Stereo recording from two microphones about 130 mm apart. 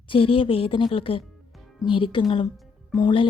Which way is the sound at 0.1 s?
45° left (ahead or behind).